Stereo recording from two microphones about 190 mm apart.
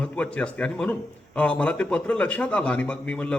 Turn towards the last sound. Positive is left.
turn(degrees=5)  # may be behind; listen again after turning